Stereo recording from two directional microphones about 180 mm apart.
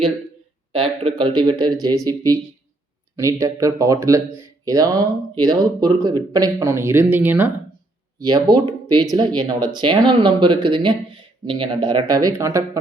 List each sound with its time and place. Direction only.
0.7 s speech: 30° right (ahead or behind); by 7.5 s 10° right (ahead or behind)
8.2 s speech: 25° right (ahead or behind)